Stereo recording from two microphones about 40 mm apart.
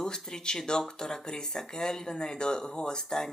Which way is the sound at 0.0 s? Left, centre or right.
Centre.